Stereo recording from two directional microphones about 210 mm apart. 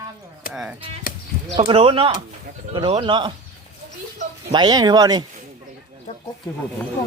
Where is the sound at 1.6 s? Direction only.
25° right (ahead or behind).